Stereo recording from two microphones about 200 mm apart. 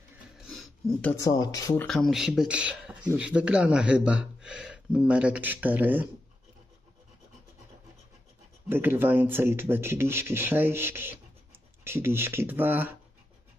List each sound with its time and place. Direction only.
0.5 s a sound: centre (ahead or behind)
1.2 s speech: 20° left (ahead or behind)
1.9 s speech: centre (ahead or behind)
8.6 s speech: 10° right (ahead or behind)